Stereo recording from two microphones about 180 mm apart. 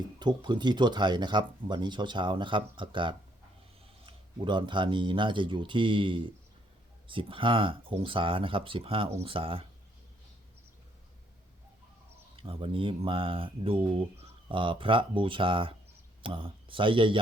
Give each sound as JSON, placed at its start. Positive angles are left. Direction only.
{"t": 0.2, "sound": "speech", "side_deg": -25}
{"t": 12.4, "sound": "speech", "side_deg": -30}